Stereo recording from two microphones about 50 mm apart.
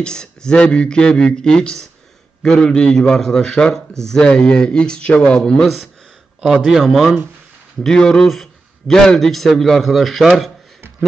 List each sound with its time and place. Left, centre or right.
0.0 s speech: centre
6.6 s a man's voice: centre
7.8 s a man's voice: centre